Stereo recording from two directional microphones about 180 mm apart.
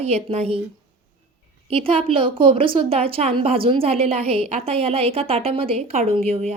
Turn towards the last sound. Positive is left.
turn(degrees=-35)  # may be behind; listen again after turning